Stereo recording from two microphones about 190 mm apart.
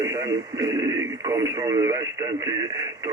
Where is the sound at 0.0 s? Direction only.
20° right (ahead or behind).